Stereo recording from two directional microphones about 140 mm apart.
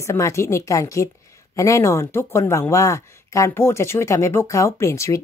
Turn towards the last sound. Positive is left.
turn(degrees=20)  # may be behind; listen again after turning